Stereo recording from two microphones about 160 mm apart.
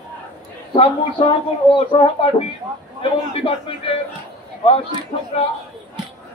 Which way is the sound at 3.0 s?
35° left (ahead or behind).